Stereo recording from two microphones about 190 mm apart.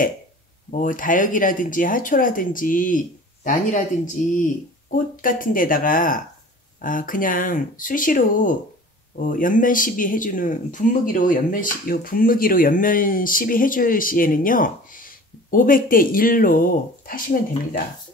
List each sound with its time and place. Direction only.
0.7 s speech: 45° left (ahead or behind)